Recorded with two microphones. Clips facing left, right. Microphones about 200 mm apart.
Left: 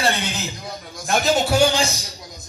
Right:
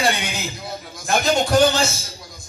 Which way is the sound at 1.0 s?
Centre (ahead or behind).